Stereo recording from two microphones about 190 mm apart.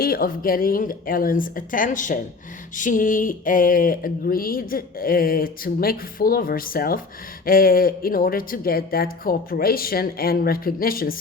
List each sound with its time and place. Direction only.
0.0 s speech: 50° left (ahead or behind)